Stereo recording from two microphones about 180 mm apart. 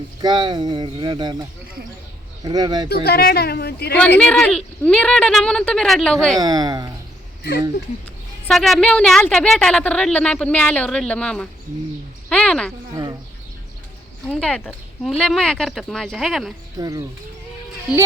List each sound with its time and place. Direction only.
0.2 s speech: 25° right (ahead or behind)
2.4 s speech: 20° right (ahead or behind)
2.9 s speech: 60° left (ahead or behind)
4.2 s speech: 5° left (ahead or behind)
6.4 s speech: 20° right (ahead or behind)
8.4 s a woman's voice: centre (ahead or behind)
12.9 s a sound: 20° right (ahead or behind)
14.3 s speech: 5° left (ahead or behind)
16.7 s speech: 20° right (ahead or behind)